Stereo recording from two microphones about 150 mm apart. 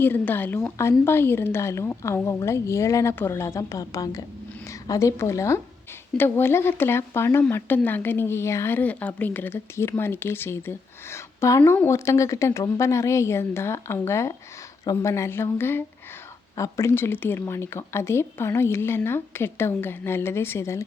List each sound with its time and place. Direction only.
0.0 s a woman's voice: 15° left (ahead or behind)